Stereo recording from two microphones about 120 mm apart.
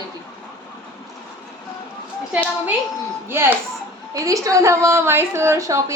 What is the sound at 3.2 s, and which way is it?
A woman's voice, 20° right (ahead or behind).